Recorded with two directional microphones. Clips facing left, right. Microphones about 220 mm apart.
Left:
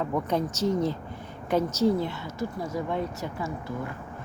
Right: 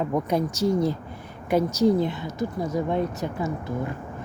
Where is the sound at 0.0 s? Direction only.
15° right (ahead or behind).